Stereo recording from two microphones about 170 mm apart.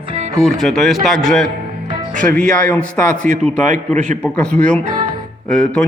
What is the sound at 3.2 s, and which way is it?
Speech, 50° right (ahead or behind).